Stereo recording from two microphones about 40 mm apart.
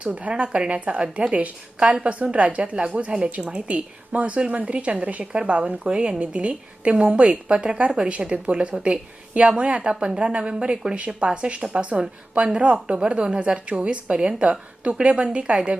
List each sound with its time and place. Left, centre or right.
0.1 s speech: right
5.2 s speech: right